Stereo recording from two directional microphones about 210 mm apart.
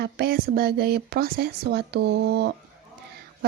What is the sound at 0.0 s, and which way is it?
Speech, 50° right (ahead or behind).